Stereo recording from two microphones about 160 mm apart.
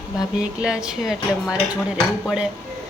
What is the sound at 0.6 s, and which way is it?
Speech, 5° right (ahead or behind).